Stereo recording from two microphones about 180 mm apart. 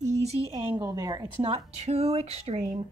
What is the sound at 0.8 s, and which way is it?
Speech, 20° right (ahead or behind).